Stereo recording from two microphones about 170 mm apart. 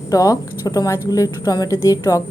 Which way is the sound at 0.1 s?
20° left (ahead or behind).